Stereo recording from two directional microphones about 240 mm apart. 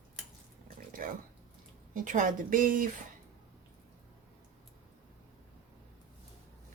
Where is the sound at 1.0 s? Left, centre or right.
Right.